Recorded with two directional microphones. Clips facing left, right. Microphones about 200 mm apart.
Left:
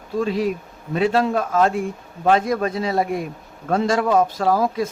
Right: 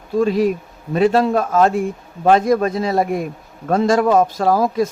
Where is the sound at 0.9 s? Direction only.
40° right (ahead or behind).